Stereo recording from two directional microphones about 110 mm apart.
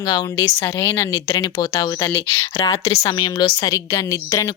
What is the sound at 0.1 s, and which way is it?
A woman's voice, 30° left (ahead or behind).